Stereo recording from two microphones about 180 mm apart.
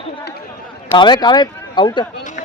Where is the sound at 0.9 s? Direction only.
25° left (ahead or behind).